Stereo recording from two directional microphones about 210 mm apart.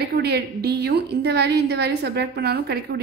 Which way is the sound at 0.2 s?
50° right (ahead or behind).